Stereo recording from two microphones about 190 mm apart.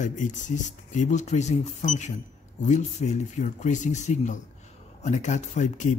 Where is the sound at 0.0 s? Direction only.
40° left (ahead or behind).